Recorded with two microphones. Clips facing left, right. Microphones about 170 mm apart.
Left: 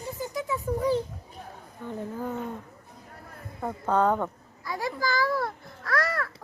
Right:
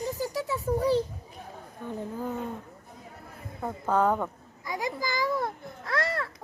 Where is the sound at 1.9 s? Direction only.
15° right (ahead or behind).